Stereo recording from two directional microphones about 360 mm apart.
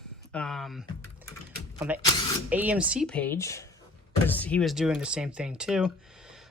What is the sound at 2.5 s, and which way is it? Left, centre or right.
Speech, centre.